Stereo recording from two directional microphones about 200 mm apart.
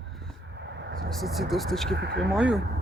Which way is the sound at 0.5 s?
60° right (ahead or behind).